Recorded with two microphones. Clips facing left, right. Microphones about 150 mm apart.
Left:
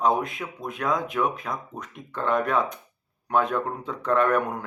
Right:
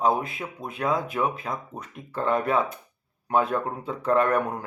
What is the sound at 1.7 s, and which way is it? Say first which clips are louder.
Speech: right 1 dB; 5° right (ahead or behind).